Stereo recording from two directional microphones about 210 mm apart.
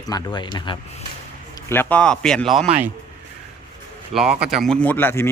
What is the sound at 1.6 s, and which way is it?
Speech, 10° left (ahead or behind).